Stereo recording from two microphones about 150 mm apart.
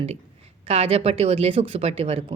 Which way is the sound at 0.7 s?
40° right (ahead or behind).